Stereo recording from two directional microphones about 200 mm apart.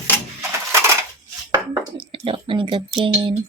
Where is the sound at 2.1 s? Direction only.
25° right (ahead or behind).